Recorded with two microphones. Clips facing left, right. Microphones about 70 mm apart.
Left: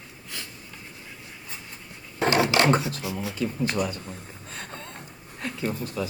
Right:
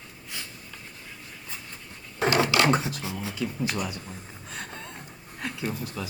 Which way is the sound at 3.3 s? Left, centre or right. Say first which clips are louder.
Left 2 dB; left.